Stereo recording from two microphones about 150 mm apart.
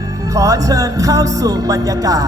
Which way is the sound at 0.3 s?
20° right (ahead or behind).